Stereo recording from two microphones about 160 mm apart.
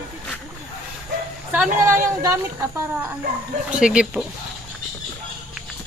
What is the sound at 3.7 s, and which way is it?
Speech, 5° right (ahead or behind).